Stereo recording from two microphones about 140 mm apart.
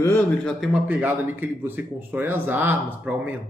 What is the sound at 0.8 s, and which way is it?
A man's voice, 10° right (ahead or behind).